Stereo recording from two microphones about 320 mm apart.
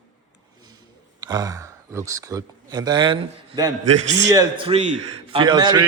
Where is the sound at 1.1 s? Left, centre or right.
Centre.